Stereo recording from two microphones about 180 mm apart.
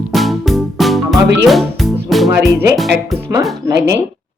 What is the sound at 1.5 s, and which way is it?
Speech, centre (ahead or behind).